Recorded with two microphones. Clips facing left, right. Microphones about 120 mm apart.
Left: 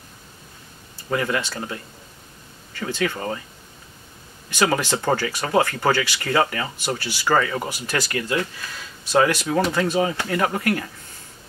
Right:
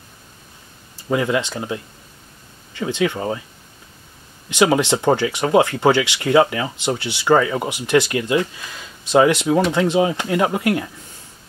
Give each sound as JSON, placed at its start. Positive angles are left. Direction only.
{"t": 1.1, "sound": "speech", "side_deg": -15}
{"t": 4.5, "sound": "speech", "side_deg": -20}